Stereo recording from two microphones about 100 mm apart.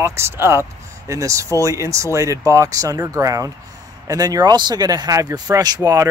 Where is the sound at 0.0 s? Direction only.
25° right (ahead or behind).